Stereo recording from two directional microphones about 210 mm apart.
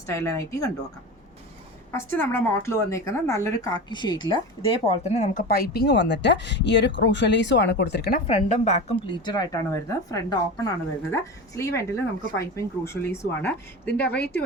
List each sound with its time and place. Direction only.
0.1 s a woman's voice: 15° left (ahead or behind)
1.9 s a woman's voice: 10° left (ahead or behind); by 8.2 s 50° left (ahead or behind)
8.3 s a woman's voice: 35° left (ahead or behind); by 14.2 s 5° left (ahead or behind)